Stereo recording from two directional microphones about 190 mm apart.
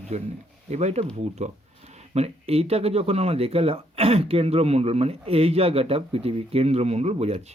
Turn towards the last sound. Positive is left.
turn(degrees=-35)  # may be behind; listen again after turning